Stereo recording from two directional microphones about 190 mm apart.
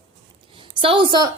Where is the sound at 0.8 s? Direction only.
25° right (ahead or behind).